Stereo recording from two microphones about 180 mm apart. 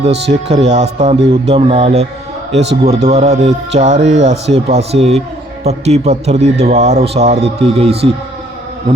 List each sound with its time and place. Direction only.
0.0 s a man's voice: 35° right (ahead or behind)